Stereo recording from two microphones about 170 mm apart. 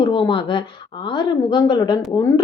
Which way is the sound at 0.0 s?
30° left (ahead or behind).